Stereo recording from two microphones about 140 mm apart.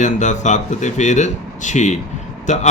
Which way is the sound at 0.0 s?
60° left (ahead or behind).